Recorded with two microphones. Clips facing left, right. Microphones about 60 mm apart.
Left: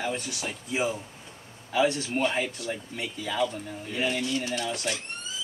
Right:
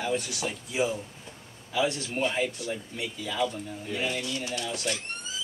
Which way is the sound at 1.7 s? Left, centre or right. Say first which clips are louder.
Left 3 dB; left.